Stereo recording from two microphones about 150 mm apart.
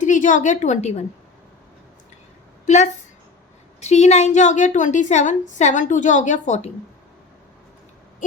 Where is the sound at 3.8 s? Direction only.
45° left (ahead or behind).